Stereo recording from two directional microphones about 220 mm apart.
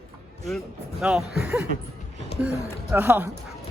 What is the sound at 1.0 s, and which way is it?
Speech, 5° right (ahead or behind).